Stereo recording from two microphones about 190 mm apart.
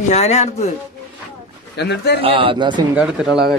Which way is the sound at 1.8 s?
60° left (ahead or behind).